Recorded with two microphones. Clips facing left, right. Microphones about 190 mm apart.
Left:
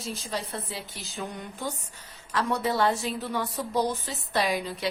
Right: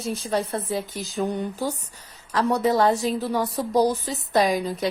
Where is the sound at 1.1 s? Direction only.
35° right (ahead or behind).